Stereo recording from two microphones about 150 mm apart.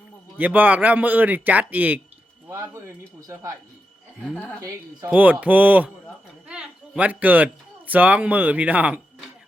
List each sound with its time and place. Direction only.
0.3 s a man's voice: 10° right (ahead or behind)
4.4 s a woman's voice: 10° left (ahead or behind)
5.0 s a man's voice: 10° right (ahead or behind)